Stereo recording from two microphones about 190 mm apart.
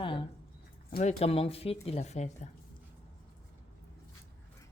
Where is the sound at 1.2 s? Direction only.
30° left (ahead or behind).